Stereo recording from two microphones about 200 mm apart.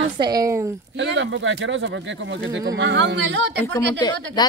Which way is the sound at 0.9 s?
65° right (ahead or behind).